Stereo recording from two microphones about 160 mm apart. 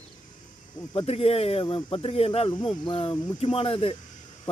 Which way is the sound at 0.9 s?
35° left (ahead or behind).